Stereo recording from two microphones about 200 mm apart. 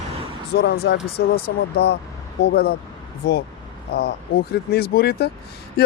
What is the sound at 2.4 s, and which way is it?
Speech, 55° left (ahead or behind).